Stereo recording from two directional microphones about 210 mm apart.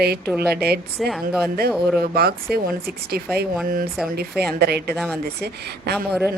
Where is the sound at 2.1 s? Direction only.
45° right (ahead or behind).